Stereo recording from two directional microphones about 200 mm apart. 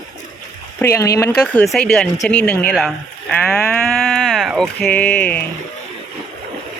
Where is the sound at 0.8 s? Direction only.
15° left (ahead or behind).